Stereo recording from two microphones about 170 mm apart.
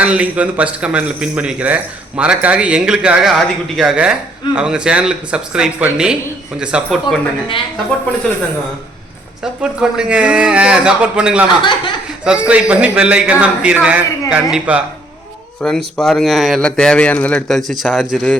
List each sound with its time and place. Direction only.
0.0 s a man's voice: 10° right (ahead or behind)
9.4 s a man's voice: 5° right (ahead or behind)
11.4 s speech: 25° left (ahead or behind)
12.2 s a man's voice: 5° right (ahead or behind)
15.6 s a man's voice: 5° left (ahead or behind)